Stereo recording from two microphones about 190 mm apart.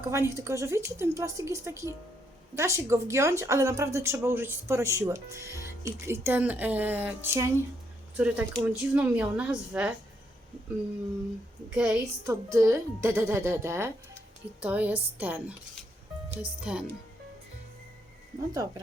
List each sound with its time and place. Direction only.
0.1 s a woman's voice: 15° right (ahead or behind)
11.7 s a woman's voice: 5° right (ahead or behind)
18.5 s speech: 20° right (ahead or behind)